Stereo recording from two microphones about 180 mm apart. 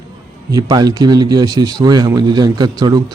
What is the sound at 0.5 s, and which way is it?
Speech, 20° right (ahead or behind).